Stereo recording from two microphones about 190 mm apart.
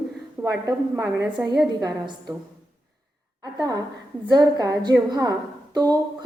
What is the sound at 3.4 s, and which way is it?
A woman's voice, 20° right (ahead or behind).